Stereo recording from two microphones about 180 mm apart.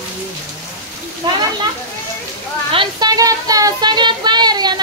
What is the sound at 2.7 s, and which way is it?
Child singing, 25° right (ahead or behind).